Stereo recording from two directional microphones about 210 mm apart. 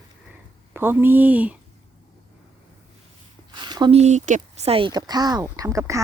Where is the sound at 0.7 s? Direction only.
10° right (ahead or behind).